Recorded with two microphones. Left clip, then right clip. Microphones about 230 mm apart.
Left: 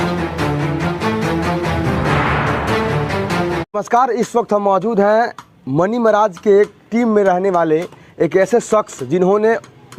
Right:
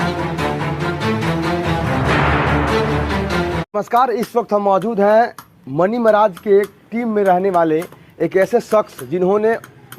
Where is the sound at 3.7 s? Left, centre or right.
Left.